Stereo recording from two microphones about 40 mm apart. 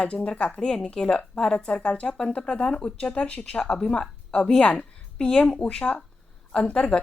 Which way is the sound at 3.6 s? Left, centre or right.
Centre.